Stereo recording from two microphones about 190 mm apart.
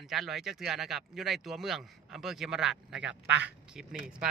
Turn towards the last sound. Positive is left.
turn(degrees=-5)  # may be behind; listen again after turning